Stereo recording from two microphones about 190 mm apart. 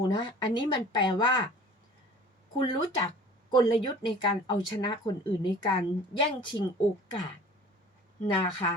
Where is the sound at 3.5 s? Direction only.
25° left (ahead or behind).